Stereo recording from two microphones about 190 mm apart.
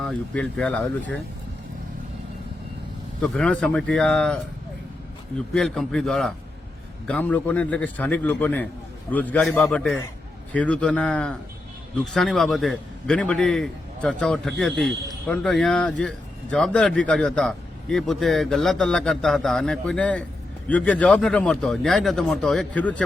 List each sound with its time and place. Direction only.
0.0 s speech: 5° left (ahead or behind)
3.2 s speech: 5° left (ahead or behind)
5.5 s a man's voice: centre (ahead or behind)